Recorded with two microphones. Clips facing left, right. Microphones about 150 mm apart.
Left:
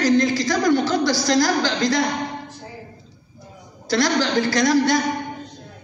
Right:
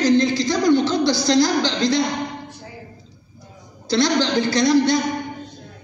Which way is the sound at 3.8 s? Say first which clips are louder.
Right 1 dB; 25° right (ahead or behind).